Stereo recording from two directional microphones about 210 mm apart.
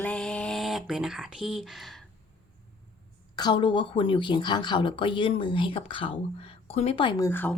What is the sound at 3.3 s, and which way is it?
A woman's voice, 20° left (ahead or behind).